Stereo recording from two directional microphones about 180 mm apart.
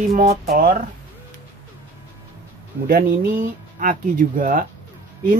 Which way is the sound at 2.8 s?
55° right (ahead or behind).